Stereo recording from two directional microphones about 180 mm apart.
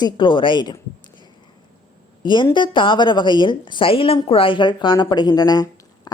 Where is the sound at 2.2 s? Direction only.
25° left (ahead or behind).